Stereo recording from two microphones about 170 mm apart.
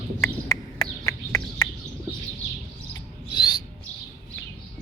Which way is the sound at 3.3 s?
25° left (ahead or behind).